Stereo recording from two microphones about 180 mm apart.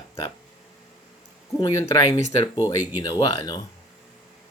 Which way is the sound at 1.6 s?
20° left (ahead or behind).